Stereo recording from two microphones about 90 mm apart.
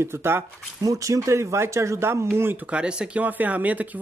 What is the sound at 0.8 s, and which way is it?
Speech, 40° right (ahead or behind).